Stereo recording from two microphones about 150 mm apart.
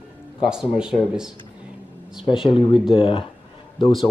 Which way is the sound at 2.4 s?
35° left (ahead or behind).